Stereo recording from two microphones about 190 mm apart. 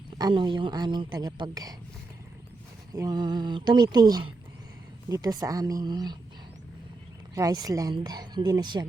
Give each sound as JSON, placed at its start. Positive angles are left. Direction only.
{"t": 0.2, "sound": "speech", "side_deg": -25}
{"t": 2.9, "sound": "speech", "side_deg": -20}
{"t": 7.3, "sound": "speech", "side_deg": -20}